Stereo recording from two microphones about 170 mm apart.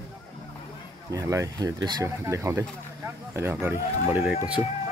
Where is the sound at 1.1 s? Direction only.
20° right (ahead or behind).